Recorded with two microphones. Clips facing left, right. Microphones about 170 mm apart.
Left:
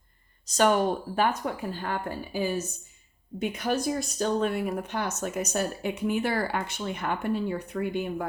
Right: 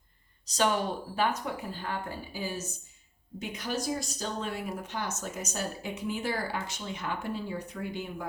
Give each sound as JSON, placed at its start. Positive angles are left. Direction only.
{"t": 0.4, "sound": "speech", "side_deg": 50}